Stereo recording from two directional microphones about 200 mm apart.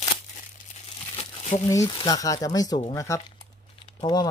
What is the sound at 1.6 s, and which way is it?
Speech, 15° left (ahead or behind).